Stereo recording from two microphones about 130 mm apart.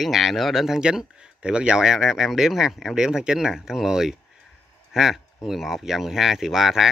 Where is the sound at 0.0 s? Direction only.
Centre (ahead or behind).